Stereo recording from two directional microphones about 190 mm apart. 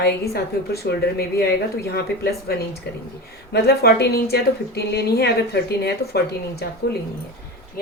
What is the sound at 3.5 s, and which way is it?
A woman's voice, 55° left (ahead or behind).